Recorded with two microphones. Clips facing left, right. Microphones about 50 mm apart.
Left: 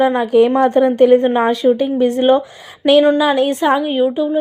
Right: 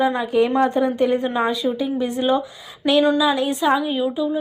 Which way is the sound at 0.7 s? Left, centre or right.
Left.